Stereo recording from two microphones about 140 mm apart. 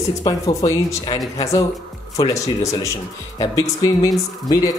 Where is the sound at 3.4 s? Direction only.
25° left (ahead or behind).